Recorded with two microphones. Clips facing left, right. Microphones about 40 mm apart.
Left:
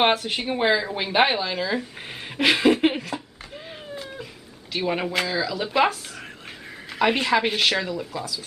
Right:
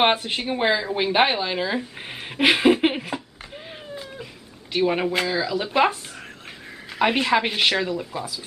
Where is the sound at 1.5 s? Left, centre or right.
Centre.